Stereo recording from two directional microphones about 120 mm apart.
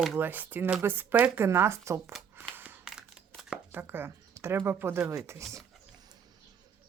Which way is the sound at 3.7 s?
20° right (ahead or behind).